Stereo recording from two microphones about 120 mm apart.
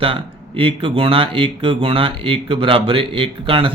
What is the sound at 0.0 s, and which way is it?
A man's voice, 50° right (ahead or behind).